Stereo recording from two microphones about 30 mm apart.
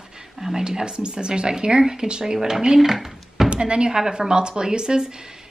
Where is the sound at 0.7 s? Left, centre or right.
Right.